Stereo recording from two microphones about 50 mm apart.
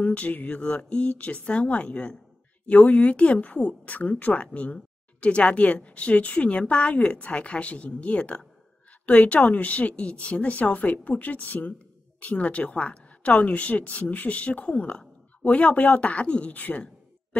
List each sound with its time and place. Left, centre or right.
0.0 s a woman's voice: left